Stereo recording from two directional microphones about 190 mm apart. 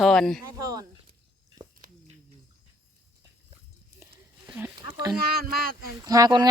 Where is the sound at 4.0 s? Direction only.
10° right (ahead or behind).